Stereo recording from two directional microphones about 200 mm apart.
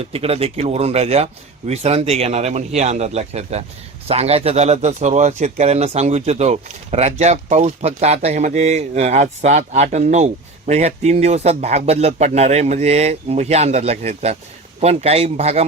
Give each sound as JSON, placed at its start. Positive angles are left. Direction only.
{"t": 0.0, "sound": "speech", "side_deg": -30}